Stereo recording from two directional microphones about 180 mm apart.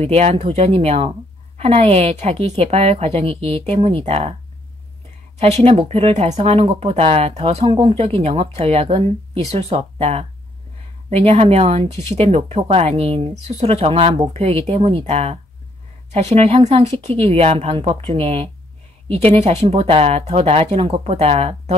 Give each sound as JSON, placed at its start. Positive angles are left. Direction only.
{"t": 0.0, "sound": "speech", "side_deg": -35}
{"t": 5.4, "sound": "speech", "side_deg": -35}